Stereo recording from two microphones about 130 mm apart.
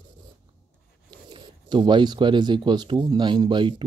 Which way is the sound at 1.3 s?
40° right (ahead or behind).